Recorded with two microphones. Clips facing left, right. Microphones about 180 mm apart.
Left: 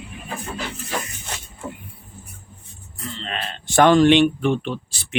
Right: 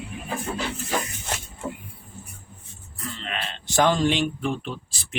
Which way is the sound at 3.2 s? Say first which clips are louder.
Left 3 dB; 35° left (ahead or behind).